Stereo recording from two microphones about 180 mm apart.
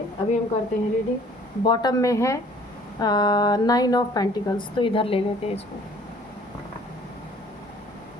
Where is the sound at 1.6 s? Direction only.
25° left (ahead or behind).